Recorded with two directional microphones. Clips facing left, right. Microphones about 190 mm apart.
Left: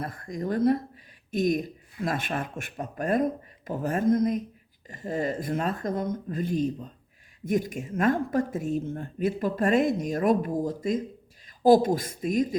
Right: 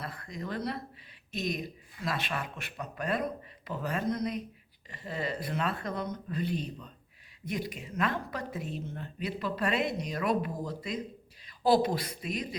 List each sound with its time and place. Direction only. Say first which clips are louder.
0.0 s a woman's voice: left 7 dB; 45° left (ahead or behind)